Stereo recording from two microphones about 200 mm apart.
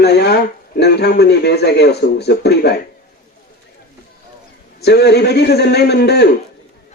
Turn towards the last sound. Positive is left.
turn(degrees=55)  # may be behind; listen again after turning